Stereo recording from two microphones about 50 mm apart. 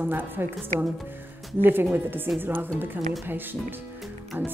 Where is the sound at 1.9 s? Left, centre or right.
Right.